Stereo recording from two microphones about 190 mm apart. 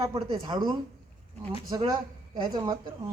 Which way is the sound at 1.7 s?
20° right (ahead or behind).